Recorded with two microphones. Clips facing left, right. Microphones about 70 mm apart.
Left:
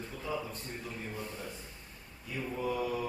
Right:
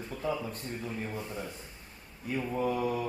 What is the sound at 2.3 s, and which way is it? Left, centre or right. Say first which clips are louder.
Mantra: right 5 dB; right.